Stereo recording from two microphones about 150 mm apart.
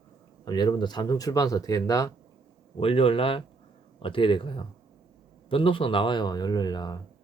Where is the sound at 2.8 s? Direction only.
40° left (ahead or behind).